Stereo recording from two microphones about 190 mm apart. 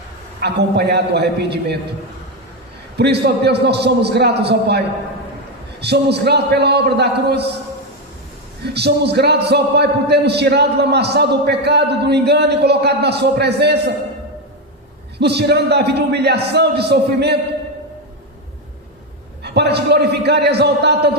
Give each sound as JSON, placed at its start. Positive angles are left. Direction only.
{"t": 0.3, "sound": "a man's voice", "side_deg": -60}
{"t": 3.0, "sound": "a man's voice", "side_deg": -60}
{"t": 5.8, "sound": "a man's voice", "side_deg": -60}
{"t": 8.6, "sound": "a man's voice", "side_deg": -60}
{"t": 15.2, "sound": "a man's voice", "side_deg": -60}
{"t": 19.4, "sound": "a man's voice", "side_deg": -60}